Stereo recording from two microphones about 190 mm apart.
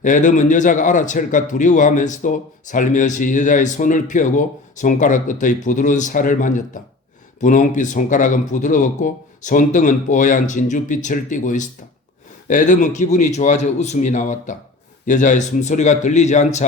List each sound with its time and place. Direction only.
0.0 s speech: 40° left (ahead or behind)